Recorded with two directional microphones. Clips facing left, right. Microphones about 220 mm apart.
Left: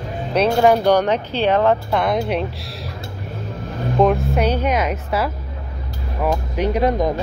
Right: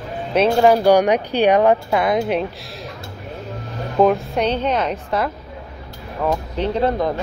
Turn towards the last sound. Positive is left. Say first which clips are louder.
# left 1 dB
turn(degrees=15)  # may be behind; listen again after turning